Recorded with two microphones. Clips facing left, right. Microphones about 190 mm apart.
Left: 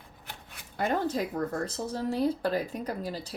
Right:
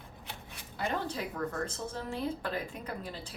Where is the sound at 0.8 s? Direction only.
45° left (ahead or behind).